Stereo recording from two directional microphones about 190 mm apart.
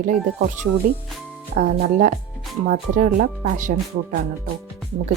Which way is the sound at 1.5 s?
45° right (ahead or behind).